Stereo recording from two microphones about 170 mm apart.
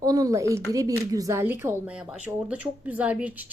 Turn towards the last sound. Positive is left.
turn(degrees=-10)  # may be behind; listen again after turning